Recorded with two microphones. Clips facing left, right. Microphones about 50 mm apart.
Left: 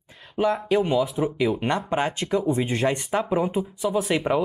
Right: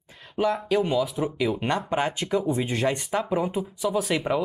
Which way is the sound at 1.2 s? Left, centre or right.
Centre.